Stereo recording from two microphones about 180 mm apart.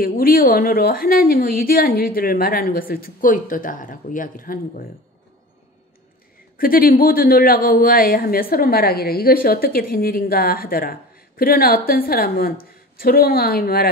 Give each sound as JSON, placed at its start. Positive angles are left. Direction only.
{"t": 0.0, "sound": "speech", "side_deg": 55}
{"t": 6.5, "sound": "speech", "side_deg": 55}